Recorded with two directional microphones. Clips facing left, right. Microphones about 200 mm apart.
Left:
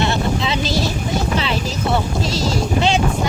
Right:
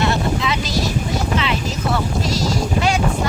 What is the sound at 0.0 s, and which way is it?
Vehicle, 25° left (ahead or behind).